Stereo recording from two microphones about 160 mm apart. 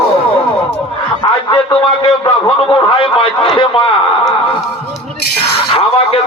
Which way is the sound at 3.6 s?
35° left (ahead or behind).